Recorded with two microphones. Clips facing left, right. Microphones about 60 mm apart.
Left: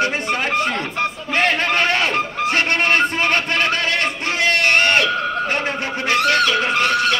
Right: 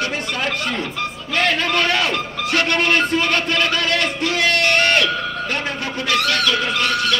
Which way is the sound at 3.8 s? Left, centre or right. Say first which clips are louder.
Right 1 dB; left.